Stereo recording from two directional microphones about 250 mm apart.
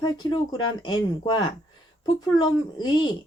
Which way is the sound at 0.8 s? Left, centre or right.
Centre.